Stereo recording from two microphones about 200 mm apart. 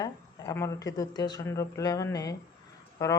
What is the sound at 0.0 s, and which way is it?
Speech, 15° left (ahead or behind).